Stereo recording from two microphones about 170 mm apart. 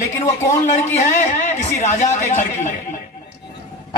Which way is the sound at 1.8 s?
45° left (ahead or behind).